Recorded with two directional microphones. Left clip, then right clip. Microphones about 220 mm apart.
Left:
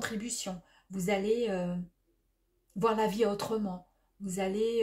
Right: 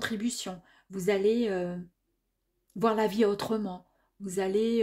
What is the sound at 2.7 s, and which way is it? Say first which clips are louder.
Speech: right 2 dB; 40° right (ahead or behind).